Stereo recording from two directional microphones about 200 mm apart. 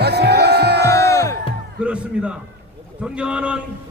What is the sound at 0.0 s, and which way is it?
Music, 55° right (ahead or behind).